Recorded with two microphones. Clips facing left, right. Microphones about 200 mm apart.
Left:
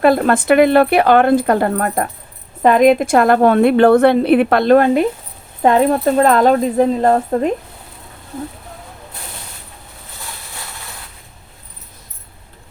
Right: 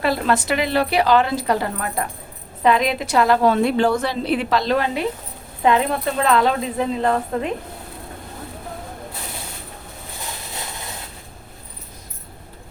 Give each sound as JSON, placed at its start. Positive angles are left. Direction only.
{"t": 0.0, "sound": "a woman's voice", "side_deg": 50}